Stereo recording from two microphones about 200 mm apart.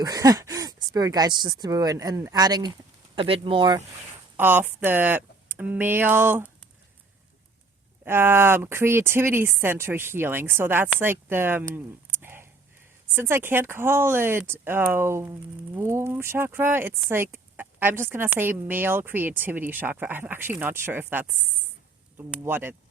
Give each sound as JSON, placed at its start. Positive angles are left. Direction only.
{"t": 0.0, "sound": "speech", "side_deg": -20}
{"t": 4.4, "sound": "speech", "side_deg": -10}
{"t": 8.0, "sound": "speech", "side_deg": -10}
{"t": 12.2, "sound": "a sound", "side_deg": -10}
{"t": 13.1, "sound": "speech", "side_deg": -10}